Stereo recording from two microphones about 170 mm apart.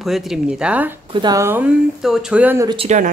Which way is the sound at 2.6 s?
35° right (ahead or behind).